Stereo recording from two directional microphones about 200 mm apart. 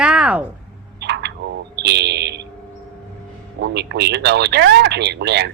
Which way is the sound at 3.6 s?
55° right (ahead or behind).